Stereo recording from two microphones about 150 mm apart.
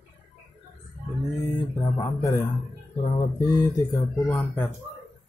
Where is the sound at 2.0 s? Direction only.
20° left (ahead or behind).